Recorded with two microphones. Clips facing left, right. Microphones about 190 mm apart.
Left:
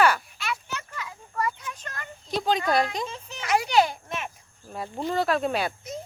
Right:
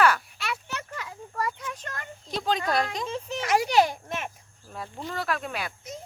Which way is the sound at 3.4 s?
45° right (ahead or behind).